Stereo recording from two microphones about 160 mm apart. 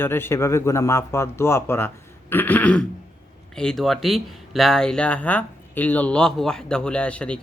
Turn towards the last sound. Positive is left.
turn(degrees=5)  # may be behind; listen again after turning